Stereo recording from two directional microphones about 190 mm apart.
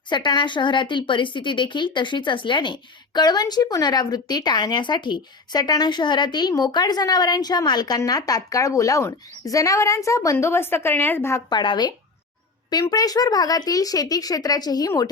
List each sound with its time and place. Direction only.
0.1 s speech: 25° left (ahead or behind)